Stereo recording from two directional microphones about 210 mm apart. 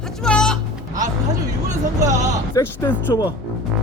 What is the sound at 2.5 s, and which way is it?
Speech, 10° left (ahead or behind).